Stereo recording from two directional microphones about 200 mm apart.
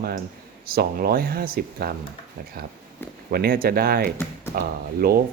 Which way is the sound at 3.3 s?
50° right (ahead or behind).